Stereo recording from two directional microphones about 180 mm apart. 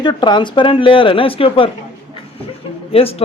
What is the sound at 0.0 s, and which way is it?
A woman's voice, 25° left (ahead or behind).